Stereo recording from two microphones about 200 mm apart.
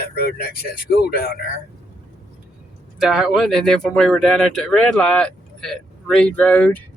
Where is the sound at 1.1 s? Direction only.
50° left (ahead or behind).